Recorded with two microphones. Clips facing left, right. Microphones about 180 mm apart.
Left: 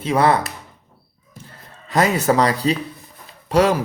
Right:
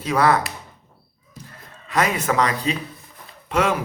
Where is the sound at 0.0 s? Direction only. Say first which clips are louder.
Left 2 dB; 25° left (ahead or behind).